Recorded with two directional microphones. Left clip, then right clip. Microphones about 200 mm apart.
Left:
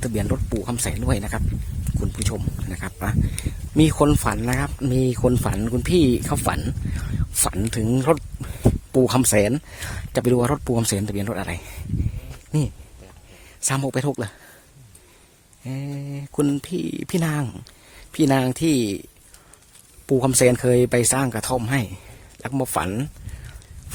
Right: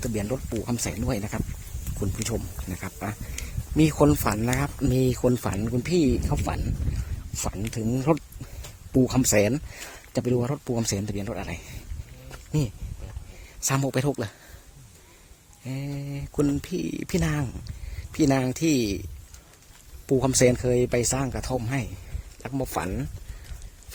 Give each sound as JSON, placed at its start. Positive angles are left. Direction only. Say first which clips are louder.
{"t": 0.0, "sound": "speech", "louder": "left 3 dB", "side_deg": 25}
{"t": 9.2, "sound": "speech", "louder": "left 3 dB", "side_deg": 20}
{"t": 10.2, "sound": "speech", "louder": "left 7 dB", "side_deg": 40}
{"t": 15.6, "sound": "speech", "louder": "left 2 dB", "side_deg": 15}
{"t": 20.1, "sound": "speech", "louder": "left 3 dB", "side_deg": 25}